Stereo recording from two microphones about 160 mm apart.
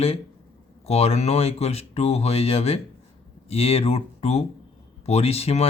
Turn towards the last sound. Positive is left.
turn(degrees=40)  # may be behind; listen again after turning